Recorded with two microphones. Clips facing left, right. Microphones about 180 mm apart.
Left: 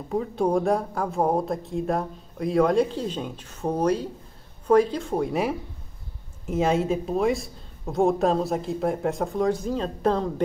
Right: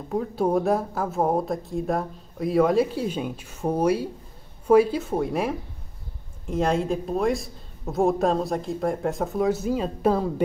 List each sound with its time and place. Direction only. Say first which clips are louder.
0.1 s speech: even; centre (ahead or behind)